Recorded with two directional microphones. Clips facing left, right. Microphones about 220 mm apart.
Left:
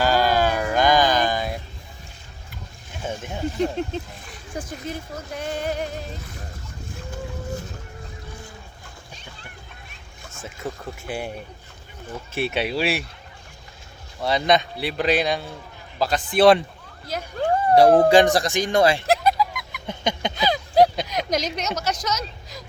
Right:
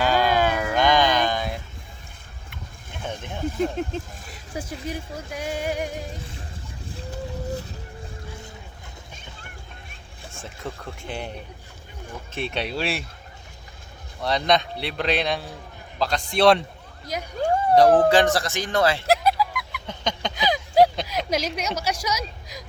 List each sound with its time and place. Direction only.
0.0 s music: 5° left (ahead or behind)
3.0 s a sound: 5° left (ahead or behind)
3.6 s a man's voice: 5° right (ahead or behind)
6.9 s boat: 35° right (ahead or behind)
10.4 s a man's voice: 5° left (ahead or behind)
12.3 s a man's voice: 5° left (ahead or behind)
14.2 s a man's voice: 5° left (ahead or behind)
17.1 s speech: 10° right (ahead or behind)
17.7 s speech: 10° left (ahead or behind)
19.0 s honk: 5° right (ahead or behind)
19.9 s a sound: 10° left (ahead or behind)
20.3 s a sound: 15° right (ahead or behind)
20.9 s a sound: centre (ahead or behind)
21.8 s speech: 10° right (ahead or behind)